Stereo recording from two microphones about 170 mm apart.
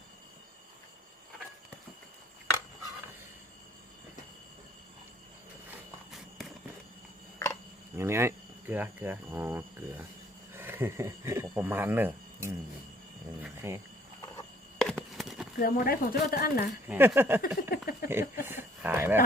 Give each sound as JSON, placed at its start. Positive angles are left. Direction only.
{"t": 7.9, "sound": "speech", "side_deg": -15}
{"t": 14.8, "sound": "a sound", "side_deg": 5}
{"t": 15.5, "sound": "speech", "side_deg": 60}
{"t": 16.9, "sound": "speech", "side_deg": -10}
{"t": 17.4, "sound": "speech", "side_deg": 60}
{"t": 18.1, "sound": "speech", "side_deg": -15}